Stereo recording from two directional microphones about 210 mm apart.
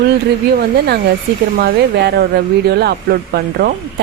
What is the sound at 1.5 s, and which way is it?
Speech, 50° right (ahead or behind).